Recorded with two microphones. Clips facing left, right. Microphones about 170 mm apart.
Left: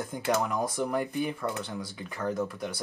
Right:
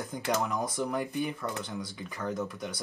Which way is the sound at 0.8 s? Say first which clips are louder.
Left 2 dB; centre (ahead or behind).